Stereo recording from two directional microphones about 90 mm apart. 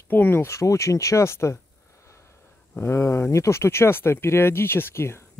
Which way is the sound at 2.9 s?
30° left (ahead or behind).